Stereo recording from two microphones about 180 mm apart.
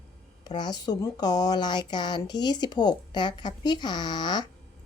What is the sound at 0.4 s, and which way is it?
Speech, 25° left (ahead or behind).